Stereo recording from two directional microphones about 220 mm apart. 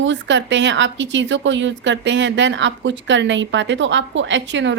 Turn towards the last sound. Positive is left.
turn(degrees=-55)  # may be behind; listen again after turning